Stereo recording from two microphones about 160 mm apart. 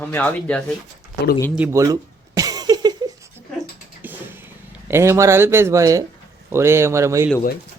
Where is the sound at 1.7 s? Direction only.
20° right (ahead or behind).